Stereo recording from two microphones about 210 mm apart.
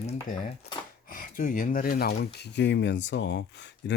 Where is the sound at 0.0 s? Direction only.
40° left (ahead or behind).